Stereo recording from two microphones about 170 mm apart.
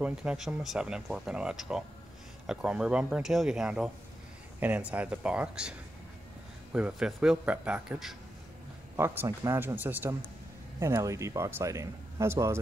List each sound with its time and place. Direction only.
0.0 s speech: 5° right (ahead or behind)